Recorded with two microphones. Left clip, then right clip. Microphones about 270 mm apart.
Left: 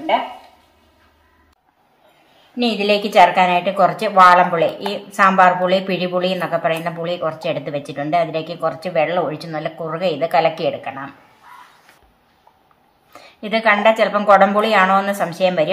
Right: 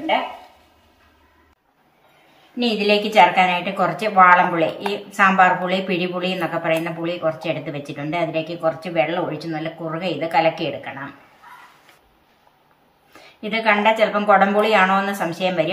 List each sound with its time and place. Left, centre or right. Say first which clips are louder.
2.8 s speech: left 2 dB; centre
13.2 s speech: left 4 dB; centre